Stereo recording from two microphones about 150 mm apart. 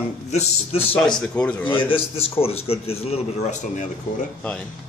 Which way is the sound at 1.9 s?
40° left (ahead or behind).